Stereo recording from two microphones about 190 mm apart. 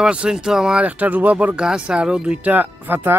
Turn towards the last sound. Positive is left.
turn(degrees=-10)  # may be behind; listen again after turning